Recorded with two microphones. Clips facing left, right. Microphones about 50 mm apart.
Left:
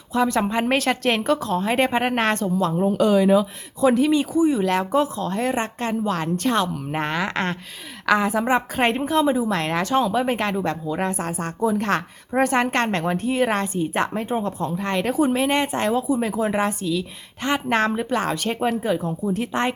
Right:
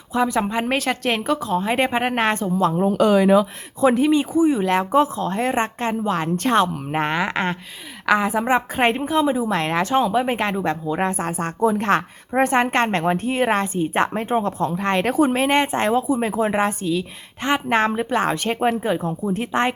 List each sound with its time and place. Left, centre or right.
0.1 s a woman's voice: centre
2.9 s speech: right
3.8 s a woman's voice: right
6.3 s a woman's voice: right
15.3 s a woman's voice: right